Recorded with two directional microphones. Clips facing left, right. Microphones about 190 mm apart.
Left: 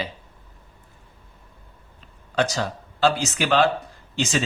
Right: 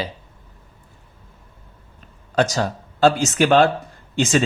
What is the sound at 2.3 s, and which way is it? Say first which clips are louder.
Speech: right 4 dB; 45° right (ahead or behind).